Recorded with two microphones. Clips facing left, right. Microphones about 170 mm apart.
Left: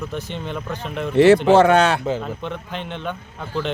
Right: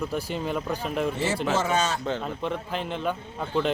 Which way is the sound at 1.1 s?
70° left (ahead or behind).